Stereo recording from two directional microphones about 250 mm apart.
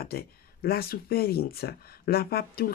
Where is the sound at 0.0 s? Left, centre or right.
Left.